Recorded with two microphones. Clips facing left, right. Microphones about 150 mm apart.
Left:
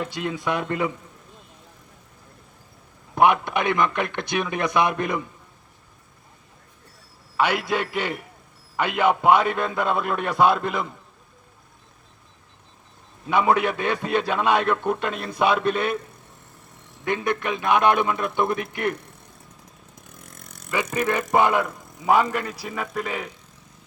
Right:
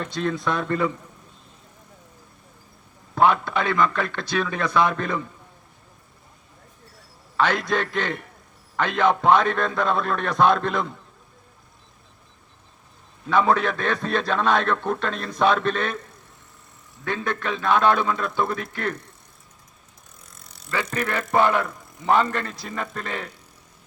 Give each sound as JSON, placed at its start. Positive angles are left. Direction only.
{"t": 0.0, "sound": "a man's voice", "side_deg": 15}
{"t": 3.2, "sound": "a man's voice", "side_deg": 15}
{"t": 7.3, "sound": "a man's voice", "side_deg": 10}
{"t": 13.2, "sound": "a man's voice", "side_deg": 15}
{"t": 17.0, "sound": "a man's voice", "side_deg": 15}
{"t": 20.4, "sound": "vehicle", "side_deg": 50}
{"t": 20.9, "sound": "a man's voice", "side_deg": 15}